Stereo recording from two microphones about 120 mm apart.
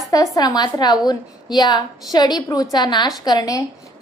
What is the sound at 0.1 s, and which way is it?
A woman's voice, 30° left (ahead or behind).